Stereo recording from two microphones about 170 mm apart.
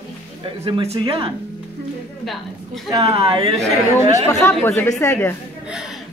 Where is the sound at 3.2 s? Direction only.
30° right (ahead or behind).